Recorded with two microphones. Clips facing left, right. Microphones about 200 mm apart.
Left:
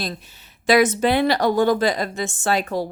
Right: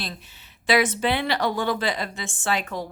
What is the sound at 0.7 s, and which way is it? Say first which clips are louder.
A woman's voice: left 5 dB; 45° left (ahead or behind).